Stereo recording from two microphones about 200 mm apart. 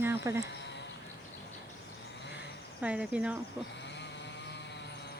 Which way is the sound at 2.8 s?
5° right (ahead or behind).